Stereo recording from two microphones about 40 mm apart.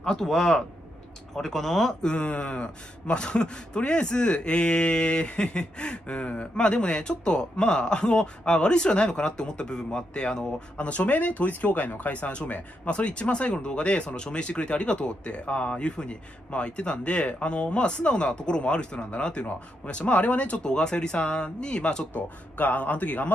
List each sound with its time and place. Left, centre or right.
0.0 s speech: centre
2.0 s speech: left
10.8 s speech: left
20.6 s speech: left
22.1 s speech: left